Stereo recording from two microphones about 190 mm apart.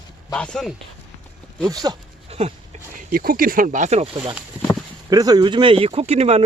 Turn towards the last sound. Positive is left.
turn(degrees=-35)  # may be behind; listen again after turning